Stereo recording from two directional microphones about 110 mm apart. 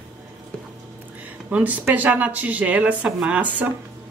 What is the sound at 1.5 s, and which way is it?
Speech, 10° right (ahead or behind).